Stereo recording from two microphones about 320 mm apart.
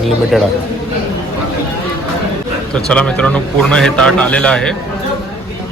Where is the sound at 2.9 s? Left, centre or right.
Centre.